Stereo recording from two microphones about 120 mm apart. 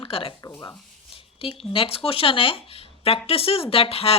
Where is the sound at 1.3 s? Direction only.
50° left (ahead or behind).